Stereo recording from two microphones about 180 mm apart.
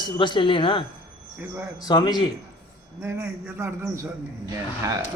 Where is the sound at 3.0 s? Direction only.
15° right (ahead or behind).